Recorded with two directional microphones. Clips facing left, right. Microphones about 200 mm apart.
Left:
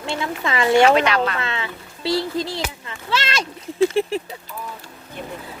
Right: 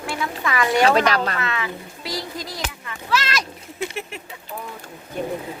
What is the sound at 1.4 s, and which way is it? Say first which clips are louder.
Speech: right 1 dB; 25° left (ahead or behind).